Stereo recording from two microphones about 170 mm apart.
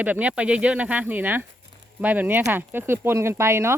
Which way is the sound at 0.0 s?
10° right (ahead or behind).